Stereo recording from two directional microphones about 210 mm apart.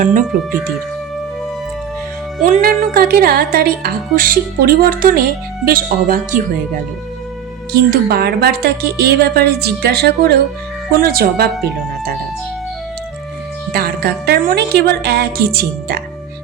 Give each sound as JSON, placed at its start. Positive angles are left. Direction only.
{"t": 0.0, "sound": "speech", "side_deg": -35}
{"t": 2.4, "sound": "speech", "side_deg": -40}
{"t": 7.7, "sound": "speech", "side_deg": -45}
{"t": 13.7, "sound": "speech", "side_deg": -50}